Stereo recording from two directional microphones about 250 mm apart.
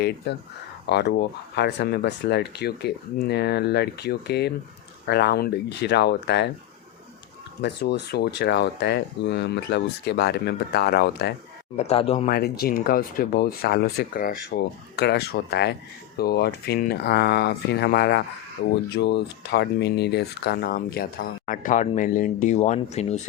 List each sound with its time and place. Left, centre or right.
0.9 s speech: left
7.6 s speech: left
11.8 s speech: left